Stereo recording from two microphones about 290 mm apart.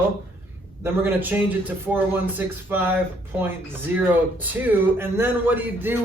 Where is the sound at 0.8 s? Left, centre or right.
Centre.